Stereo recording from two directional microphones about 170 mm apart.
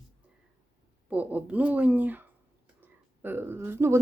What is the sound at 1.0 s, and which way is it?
Speech, 10° right (ahead or behind).